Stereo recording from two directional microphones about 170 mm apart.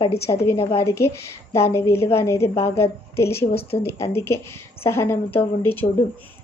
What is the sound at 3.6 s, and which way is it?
Speech, 35° left (ahead or behind).